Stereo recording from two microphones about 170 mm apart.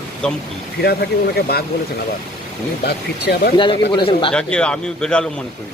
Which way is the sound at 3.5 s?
30° left (ahead or behind).